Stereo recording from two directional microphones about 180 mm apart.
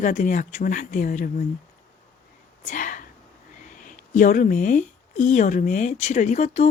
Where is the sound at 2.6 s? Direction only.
45° left (ahead or behind).